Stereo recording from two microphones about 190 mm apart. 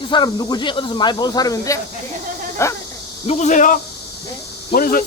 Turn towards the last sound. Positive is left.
turn(degrees=50)  # may be behind; listen again after turning